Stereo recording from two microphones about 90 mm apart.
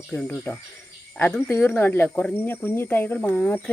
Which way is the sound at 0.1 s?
10° left (ahead or behind).